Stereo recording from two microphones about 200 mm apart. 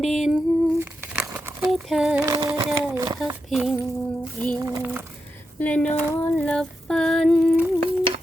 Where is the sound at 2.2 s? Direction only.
15° right (ahead or behind).